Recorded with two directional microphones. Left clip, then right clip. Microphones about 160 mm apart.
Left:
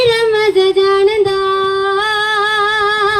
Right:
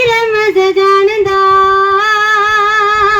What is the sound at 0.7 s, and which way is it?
Music, 40° right (ahead or behind).